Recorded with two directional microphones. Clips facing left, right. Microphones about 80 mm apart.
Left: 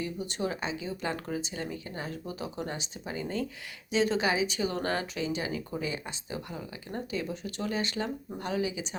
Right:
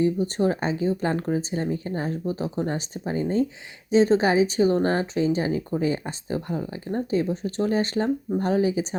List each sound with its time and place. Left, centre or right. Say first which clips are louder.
0.0 s speech: right 11 dB; right